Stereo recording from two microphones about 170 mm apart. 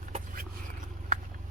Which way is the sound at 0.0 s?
50° right (ahead or behind).